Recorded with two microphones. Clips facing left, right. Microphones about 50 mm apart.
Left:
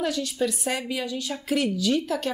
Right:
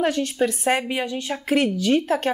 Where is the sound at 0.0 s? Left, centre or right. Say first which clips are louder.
Right 5 dB; right.